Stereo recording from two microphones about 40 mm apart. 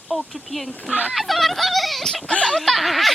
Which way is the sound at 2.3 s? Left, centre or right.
Left.